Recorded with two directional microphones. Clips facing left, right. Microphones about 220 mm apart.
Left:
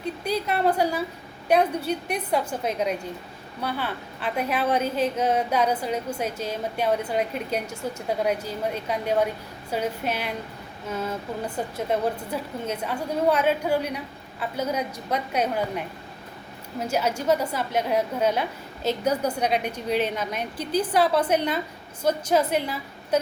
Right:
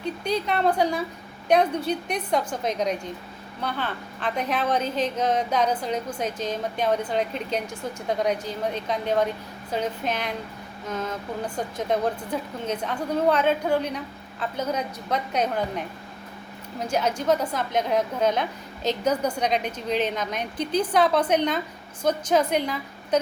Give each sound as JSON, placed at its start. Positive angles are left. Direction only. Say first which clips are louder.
{"t": 0.3, "sound": "a woman's voice", "louder": "even", "side_deg": 5}
{"t": 16.8, "sound": "a woman's voice", "louder": "even", "side_deg": 10}